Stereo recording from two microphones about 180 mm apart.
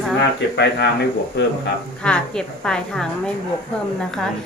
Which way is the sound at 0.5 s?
75° left (ahead or behind).